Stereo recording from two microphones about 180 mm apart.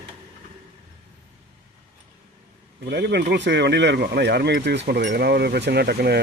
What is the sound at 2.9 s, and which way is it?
Speech, 65° right (ahead or behind).